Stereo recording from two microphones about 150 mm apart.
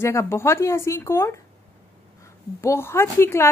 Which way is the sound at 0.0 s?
20° left (ahead or behind).